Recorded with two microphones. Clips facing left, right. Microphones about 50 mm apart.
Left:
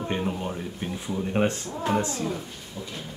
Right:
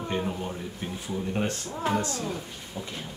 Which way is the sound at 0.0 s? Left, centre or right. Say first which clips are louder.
Left 2 dB; centre.